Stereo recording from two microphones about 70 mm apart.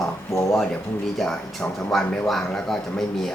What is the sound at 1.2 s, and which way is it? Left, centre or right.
Speech, centre.